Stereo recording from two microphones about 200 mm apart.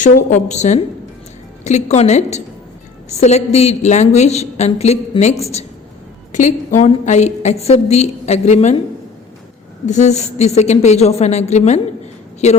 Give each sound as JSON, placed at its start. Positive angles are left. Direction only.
{"t": 0.0, "sound": "a woman's voice", "side_deg": 40}
{"t": 9.8, "sound": "a woman's voice", "side_deg": 35}